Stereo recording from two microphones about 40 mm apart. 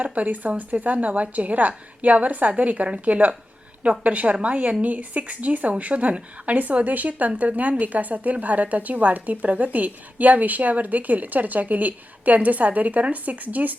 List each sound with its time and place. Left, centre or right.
0.0 s a woman's voice: right